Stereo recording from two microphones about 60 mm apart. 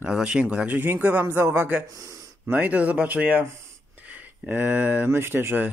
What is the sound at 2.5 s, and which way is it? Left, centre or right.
Speech, right.